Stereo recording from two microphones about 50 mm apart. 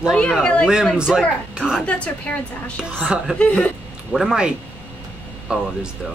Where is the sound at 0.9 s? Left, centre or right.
Centre.